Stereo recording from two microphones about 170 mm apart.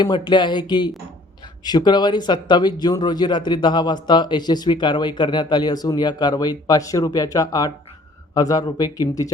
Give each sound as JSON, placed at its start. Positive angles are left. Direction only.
{"t": 0.0, "sound": "speech", "side_deg": 25}